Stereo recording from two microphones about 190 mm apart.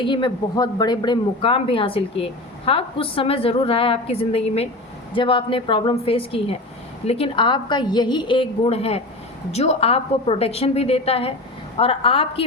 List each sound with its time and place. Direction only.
0.0 s a woman's voice: 25° left (ahead or behind)